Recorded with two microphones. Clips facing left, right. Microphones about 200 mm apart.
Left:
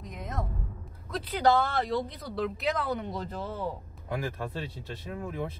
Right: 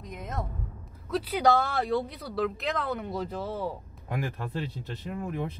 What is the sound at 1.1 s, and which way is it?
Speech, 10° right (ahead or behind).